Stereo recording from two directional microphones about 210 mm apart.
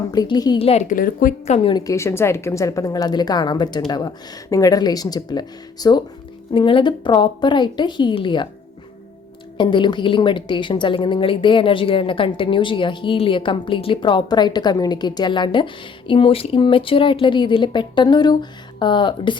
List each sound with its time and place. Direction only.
0.1 s a woman's voice: 20° left (ahead or behind)
9.6 s a woman's voice: 20° left (ahead or behind)